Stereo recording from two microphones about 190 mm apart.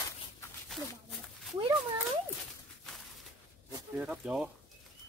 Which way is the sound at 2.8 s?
Centre (ahead or behind).